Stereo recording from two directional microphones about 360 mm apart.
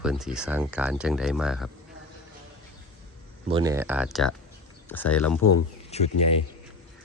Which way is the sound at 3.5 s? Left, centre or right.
Centre.